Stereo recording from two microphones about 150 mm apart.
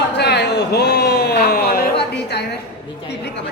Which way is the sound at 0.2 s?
90° left.